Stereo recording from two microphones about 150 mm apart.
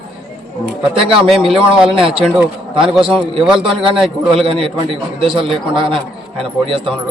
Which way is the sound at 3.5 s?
5° right (ahead or behind).